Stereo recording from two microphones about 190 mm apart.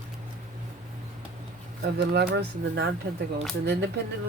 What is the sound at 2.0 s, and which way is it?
Speech, 60° right (ahead or behind).